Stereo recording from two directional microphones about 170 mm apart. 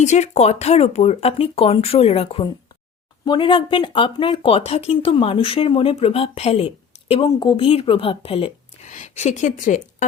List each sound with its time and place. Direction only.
0.0 s a woman's voice: 40° left (ahead or behind)